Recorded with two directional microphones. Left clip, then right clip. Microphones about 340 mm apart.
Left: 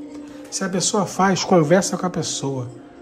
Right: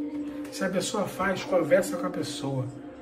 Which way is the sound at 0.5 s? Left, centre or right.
Centre.